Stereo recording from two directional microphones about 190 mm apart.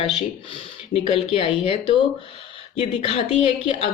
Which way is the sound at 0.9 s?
30° left (ahead or behind).